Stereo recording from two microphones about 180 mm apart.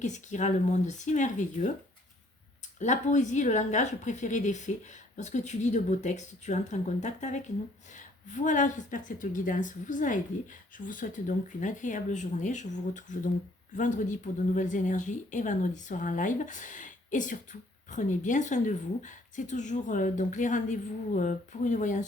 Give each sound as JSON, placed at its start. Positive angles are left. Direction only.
{"t": 0.0, "sound": "speech", "side_deg": 40}
{"t": 2.7, "sound": "a woman's voice", "side_deg": 40}